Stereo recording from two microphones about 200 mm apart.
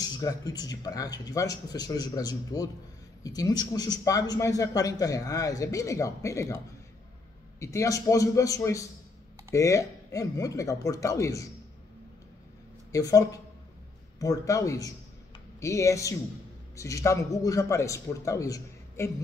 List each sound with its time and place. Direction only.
0.0 s a man's voice: 15° left (ahead or behind)
12.9 s a man's voice: 15° left (ahead or behind)
14.2 s a man's voice: 15° left (ahead or behind)